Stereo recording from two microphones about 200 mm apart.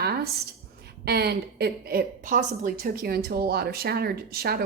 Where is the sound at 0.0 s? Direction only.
50° right (ahead or behind).